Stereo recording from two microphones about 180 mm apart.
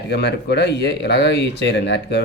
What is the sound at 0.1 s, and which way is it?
Speech, 70° left (ahead or behind).